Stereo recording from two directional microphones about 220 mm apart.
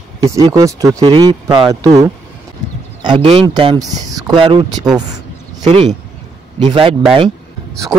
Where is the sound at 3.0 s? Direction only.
25° right (ahead or behind).